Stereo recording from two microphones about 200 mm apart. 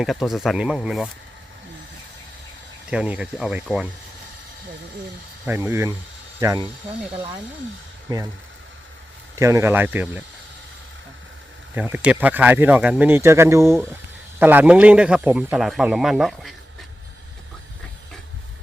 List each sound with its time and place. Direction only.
0.0 s a man's voice: centre (ahead or behind)
2.9 s a man's voice: 5° right (ahead or behind)
5.5 s speech: 10° right (ahead or behind)
8.1 s speech: 20° right (ahead or behind)
9.4 s speech: 15° right (ahead or behind)
11.7 s a man's voice: 10° right (ahead or behind)